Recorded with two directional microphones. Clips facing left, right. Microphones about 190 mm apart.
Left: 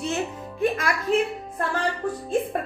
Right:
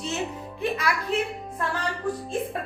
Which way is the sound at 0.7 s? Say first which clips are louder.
Left 2 dB; 50° left (ahead or behind).